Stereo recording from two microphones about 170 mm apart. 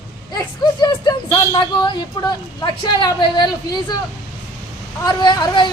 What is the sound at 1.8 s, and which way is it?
Speech, 25° left (ahead or behind).